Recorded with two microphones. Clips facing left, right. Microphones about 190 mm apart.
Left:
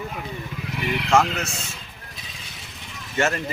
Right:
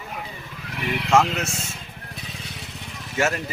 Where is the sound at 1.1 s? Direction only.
5° right (ahead or behind).